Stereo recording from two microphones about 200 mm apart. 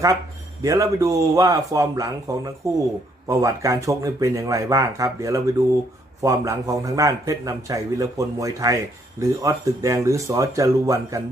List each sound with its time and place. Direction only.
0.6 s a man's voice: 15° right (ahead or behind)